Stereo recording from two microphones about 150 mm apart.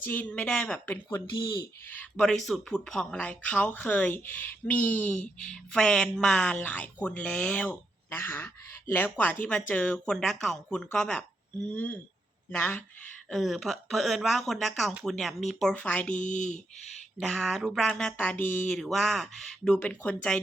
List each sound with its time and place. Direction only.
0.0 s speech: 10° left (ahead or behind)
16.3 s speech: 55° left (ahead or behind)
17.2 s speech: centre (ahead or behind)